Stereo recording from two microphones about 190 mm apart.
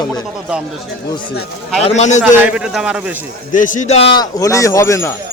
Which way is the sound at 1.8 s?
35° left (ahead or behind).